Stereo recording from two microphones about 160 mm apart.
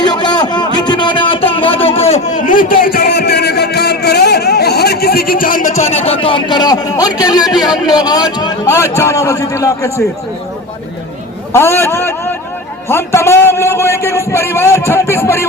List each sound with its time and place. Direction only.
0.0 s a sound: 25° left (ahead or behind); by 5.8 s 55° left (ahead or behind)
5.9 s a man's voice: 40° left (ahead or behind); by 9.9 s 20° left (ahead or behind)
11.5 s a man's voice: 15° left (ahead or behind)